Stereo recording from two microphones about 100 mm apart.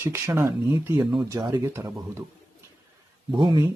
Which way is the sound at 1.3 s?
40° right (ahead or behind).